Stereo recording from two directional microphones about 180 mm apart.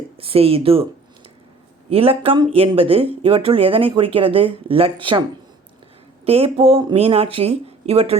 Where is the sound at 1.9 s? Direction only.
30° right (ahead or behind).